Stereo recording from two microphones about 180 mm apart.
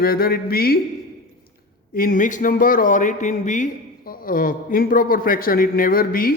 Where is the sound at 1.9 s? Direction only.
50° left (ahead or behind).